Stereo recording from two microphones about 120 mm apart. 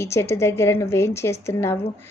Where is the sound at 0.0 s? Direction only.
20° left (ahead or behind).